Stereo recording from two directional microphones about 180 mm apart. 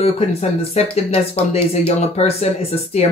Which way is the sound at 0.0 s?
35° left (ahead or behind).